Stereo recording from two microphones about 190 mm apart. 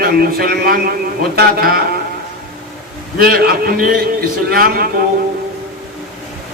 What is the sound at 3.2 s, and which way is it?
A man's voice, 50° right (ahead or behind).